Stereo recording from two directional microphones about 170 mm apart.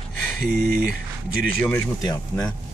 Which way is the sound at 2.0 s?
20° left (ahead or behind).